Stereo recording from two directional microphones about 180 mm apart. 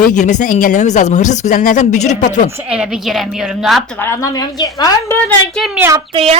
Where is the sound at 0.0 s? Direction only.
45° left (ahead or behind).